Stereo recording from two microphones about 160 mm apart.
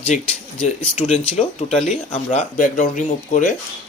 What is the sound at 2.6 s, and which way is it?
Speech, 55° left (ahead or behind).